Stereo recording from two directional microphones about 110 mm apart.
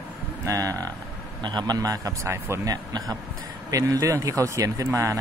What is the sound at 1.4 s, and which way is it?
Speech, 40° right (ahead or behind).